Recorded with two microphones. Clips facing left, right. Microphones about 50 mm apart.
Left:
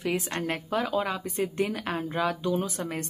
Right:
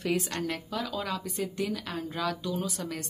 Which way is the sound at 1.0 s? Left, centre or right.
Left.